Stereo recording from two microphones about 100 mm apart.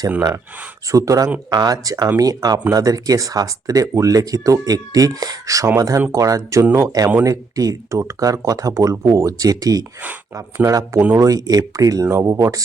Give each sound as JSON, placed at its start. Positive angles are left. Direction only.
{"t": 0.9, "sound": "speech", "side_deg": -35}